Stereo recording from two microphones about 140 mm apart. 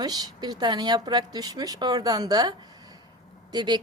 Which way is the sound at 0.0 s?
30° right (ahead or behind).